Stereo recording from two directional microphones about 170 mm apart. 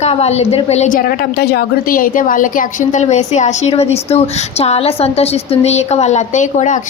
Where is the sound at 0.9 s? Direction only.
55° left (ahead or behind).